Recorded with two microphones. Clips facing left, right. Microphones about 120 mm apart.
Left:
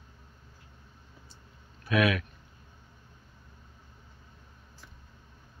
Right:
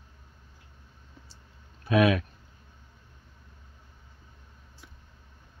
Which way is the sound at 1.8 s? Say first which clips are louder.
Right 4 dB; 30° right (ahead or behind).